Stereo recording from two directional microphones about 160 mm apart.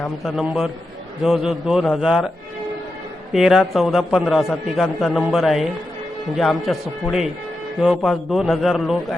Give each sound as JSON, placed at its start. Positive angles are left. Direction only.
{"t": 0.0, "sound": "a man's voice", "side_deg": 0}
{"t": 3.3, "sound": "a man's voice", "side_deg": 0}